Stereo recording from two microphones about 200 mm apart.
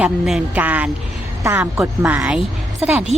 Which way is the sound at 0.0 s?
5° right (ahead or behind).